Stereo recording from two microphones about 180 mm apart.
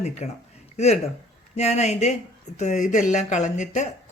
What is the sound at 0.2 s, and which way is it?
Speech, 40° left (ahead or behind).